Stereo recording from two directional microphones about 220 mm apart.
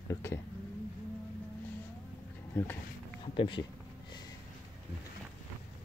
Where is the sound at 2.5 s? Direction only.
10° left (ahead or behind).